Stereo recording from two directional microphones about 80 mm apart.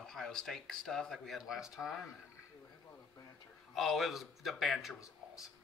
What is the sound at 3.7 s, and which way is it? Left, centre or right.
Speech, centre.